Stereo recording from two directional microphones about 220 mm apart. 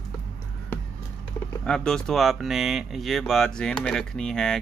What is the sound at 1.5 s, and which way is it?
Speech, 5° left (ahead or behind).